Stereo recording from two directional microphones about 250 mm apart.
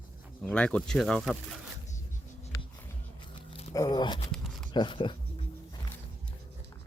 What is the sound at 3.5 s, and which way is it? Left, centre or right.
Speech, centre.